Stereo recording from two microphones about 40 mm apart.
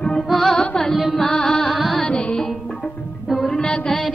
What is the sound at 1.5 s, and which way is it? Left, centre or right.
Carnatic music, centre.